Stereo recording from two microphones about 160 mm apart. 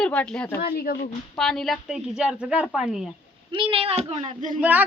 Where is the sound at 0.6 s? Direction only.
70° left (ahead or behind).